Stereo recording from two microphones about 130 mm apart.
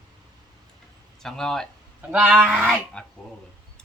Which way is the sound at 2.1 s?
10° right (ahead or behind).